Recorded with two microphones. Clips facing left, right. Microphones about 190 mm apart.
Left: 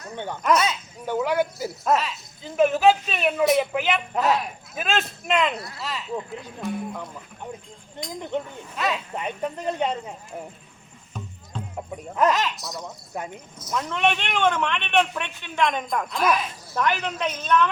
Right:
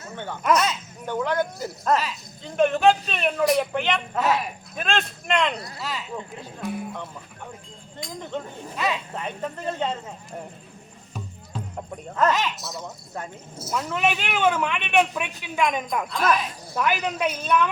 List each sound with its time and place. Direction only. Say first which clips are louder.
0.1 s speech: even; 15° left (ahead or behind); by 7.1 s centre (ahead or behind)
8.3 s speech: left 4 dB; 15° left (ahead or behind)
8.7 s speech: even; centre (ahead or behind)
9.1 s speech: left 2 dB; 15° left (ahead or behind)
11.1 s music: even; 5° right (ahead or behind)
12.3 s speech: even; centre (ahead or behind)
13.1 s speech: left 3 dB; 15° left (ahead or behind)
13.6 s speech: even; 10° right (ahead or behind)
16.7 s speech: even; 10° right (ahead or behind)